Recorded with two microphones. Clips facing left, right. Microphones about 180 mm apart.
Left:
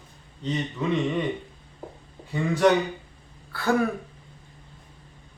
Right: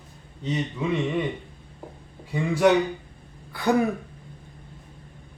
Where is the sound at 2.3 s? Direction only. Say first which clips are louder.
Right 1 dB; 10° right (ahead or behind).